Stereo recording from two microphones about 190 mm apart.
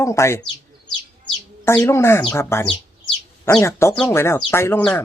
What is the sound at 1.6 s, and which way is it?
Speech, 15° left (ahead or behind).